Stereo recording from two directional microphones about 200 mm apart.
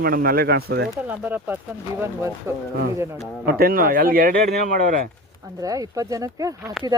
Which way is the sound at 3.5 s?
45° right (ahead or behind).